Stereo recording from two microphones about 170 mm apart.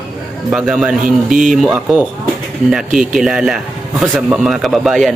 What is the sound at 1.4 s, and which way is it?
Speech, centre (ahead or behind).